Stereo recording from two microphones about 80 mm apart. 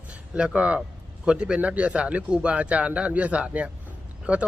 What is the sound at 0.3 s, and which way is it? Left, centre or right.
Speech, centre.